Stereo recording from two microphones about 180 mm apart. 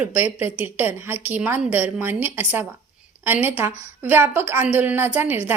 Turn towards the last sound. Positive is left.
turn(degrees=-10)  # may be behind; listen again after turning